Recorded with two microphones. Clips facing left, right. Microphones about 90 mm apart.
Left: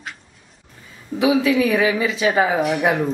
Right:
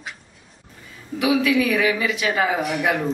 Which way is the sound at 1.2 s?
25° left (ahead or behind).